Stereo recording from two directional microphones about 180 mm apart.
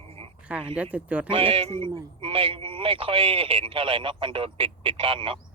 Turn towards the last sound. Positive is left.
turn(degrees=-30)  # may be behind; listen again after turning